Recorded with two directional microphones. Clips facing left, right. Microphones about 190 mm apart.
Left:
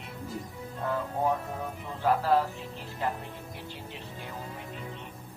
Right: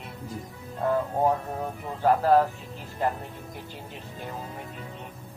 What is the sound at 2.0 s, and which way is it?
Speech, 45° right (ahead or behind).